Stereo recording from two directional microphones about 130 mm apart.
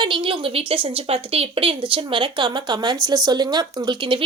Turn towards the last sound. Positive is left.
turn(degrees=-35)  # may be behind; listen again after turning